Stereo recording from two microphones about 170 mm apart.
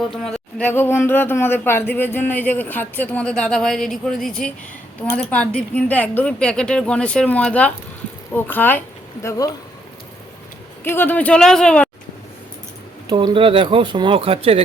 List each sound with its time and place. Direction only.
0.1 s speech: 5° left (ahead or behind)
10.8 s speech: 10° left (ahead or behind)
13.1 s speech: 25° right (ahead or behind)